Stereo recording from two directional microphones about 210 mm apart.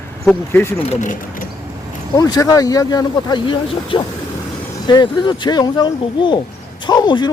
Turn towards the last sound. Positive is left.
turn(degrees=20)  # may be behind; listen again after turning